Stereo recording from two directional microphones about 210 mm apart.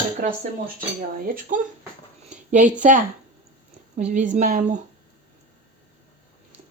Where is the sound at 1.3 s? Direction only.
40° right (ahead or behind).